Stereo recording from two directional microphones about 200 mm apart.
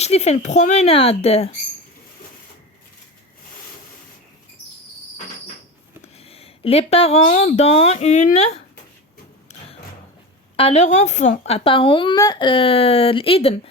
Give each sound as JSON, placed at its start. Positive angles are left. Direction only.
{"t": 0.0, "sound": "speech", "side_deg": 30}
{"t": 6.2, "sound": "speech", "side_deg": 30}
{"t": 9.5, "sound": "music", "side_deg": 30}
{"t": 10.6, "sound": "a woman's voice", "side_deg": 30}